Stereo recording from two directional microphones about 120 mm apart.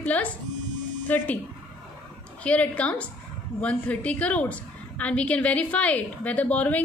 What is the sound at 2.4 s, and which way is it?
A woman's voice, 10° left (ahead or behind).